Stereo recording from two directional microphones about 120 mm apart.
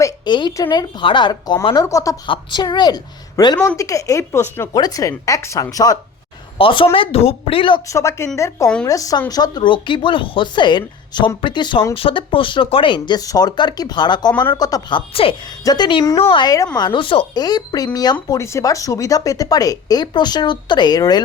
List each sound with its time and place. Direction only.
0.3 s speech: 40° left (ahead or behind)
2.2 s speech: 40° left (ahead or behind)
6.6 s speech: 45° left (ahead or behind)
7.9 s speech: 25° left (ahead or behind); by 15.4 s 50° left (ahead or behind)
15.6 s speech: 35° left (ahead or behind)
17.4 s speech: 35° left (ahead or behind)